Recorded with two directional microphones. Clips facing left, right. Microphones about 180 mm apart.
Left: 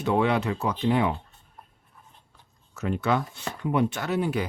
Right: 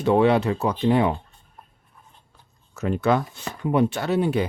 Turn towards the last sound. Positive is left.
turn(degrees=-30)  # may be behind; listen again after turning